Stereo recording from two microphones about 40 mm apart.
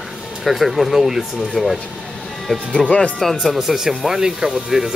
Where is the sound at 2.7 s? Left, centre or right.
Left.